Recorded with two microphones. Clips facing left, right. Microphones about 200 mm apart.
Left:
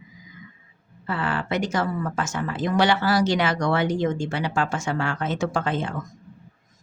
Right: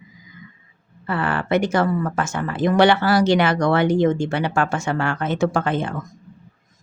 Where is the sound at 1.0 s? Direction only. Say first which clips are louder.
Right 3 dB; 60° right (ahead or behind).